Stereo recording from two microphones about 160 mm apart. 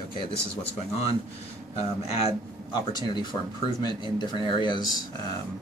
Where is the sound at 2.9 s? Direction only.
30° left (ahead or behind).